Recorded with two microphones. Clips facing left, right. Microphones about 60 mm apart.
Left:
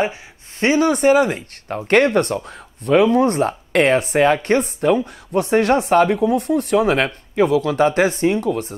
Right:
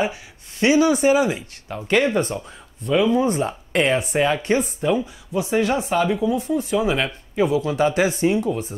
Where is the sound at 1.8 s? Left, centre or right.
Left.